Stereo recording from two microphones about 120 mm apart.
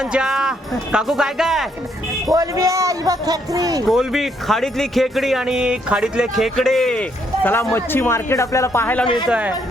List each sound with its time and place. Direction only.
0.0 s speech: 5° right (ahead or behind)
2.3 s a man's voice: 25° right (ahead or behind)
3.8 s speech: centre (ahead or behind)
7.4 s speech: 20° left (ahead or behind)
9.2 s speech: 5° right (ahead or behind)